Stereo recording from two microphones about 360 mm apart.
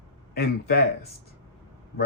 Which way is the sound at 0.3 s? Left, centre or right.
Left.